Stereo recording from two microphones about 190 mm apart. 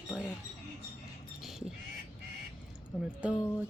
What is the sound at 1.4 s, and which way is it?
Crow, centre (ahead or behind).